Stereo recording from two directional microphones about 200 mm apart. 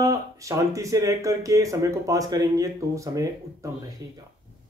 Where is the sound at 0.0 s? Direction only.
15° right (ahead or behind).